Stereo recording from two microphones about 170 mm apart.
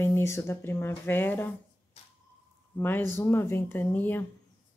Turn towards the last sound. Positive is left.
turn(degrees=10)  # may be behind; listen again after turning